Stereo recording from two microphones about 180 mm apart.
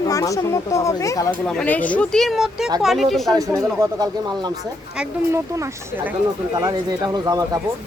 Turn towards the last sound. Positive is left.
turn(degrees=-20)  # may be behind; listen again after turning